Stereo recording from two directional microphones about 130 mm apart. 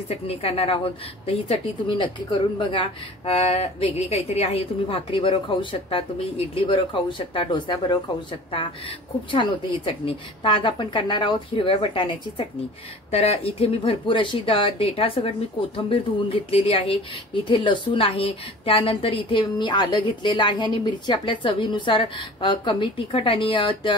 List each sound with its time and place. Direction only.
0.1 s a woman's voice: 50° left (ahead or behind)
13.1 s speech: 55° left (ahead or behind)